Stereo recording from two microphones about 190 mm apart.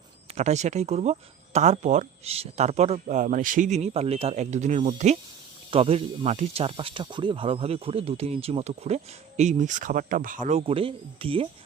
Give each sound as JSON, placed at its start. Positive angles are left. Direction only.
{"t": 0.3, "sound": "speech", "side_deg": -35}